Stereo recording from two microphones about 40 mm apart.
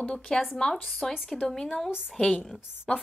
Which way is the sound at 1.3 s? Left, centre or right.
Centre.